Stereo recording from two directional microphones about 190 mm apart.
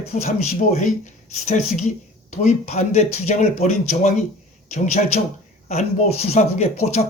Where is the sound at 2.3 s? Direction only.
35° left (ahead or behind).